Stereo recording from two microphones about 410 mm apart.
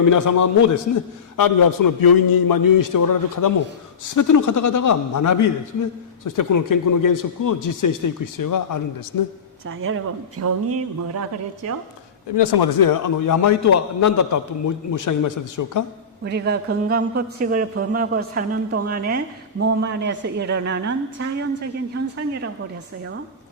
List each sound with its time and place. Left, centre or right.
0.0 s speech: left
9.6 s speech: right
12.3 s speech: left
16.2 s speech: right